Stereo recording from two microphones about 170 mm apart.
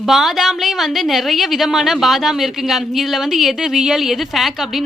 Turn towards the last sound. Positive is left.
turn(degrees=0)  # may be behind; listen again after turning